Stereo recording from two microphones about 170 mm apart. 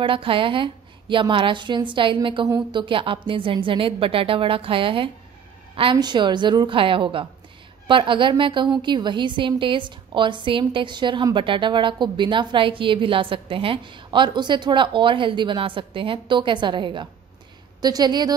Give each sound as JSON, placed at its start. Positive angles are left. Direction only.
{"t": 0.0, "sound": "a woman's voice", "side_deg": -30}